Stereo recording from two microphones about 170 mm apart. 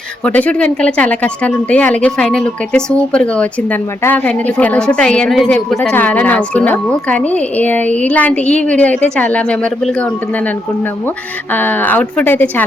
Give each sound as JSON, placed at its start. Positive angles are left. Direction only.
{"t": 0.3, "sound": "speech", "side_deg": 10}
{"t": 11.5, "sound": "speech", "side_deg": 10}